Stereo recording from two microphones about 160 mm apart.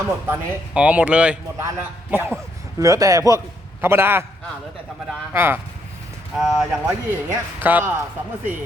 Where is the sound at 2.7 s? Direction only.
20° right (ahead or behind).